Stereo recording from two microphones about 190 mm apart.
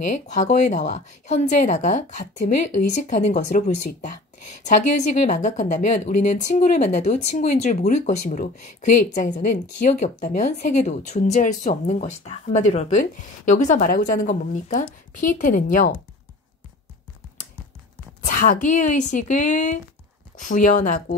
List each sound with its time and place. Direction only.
0.0 s speech: 40° left (ahead or behind)
18.2 s speech: 45° left (ahead or behind)